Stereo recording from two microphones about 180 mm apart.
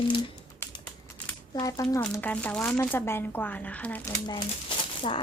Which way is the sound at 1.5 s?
20° left (ahead or behind).